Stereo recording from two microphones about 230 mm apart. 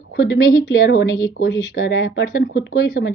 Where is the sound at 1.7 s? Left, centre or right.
Left.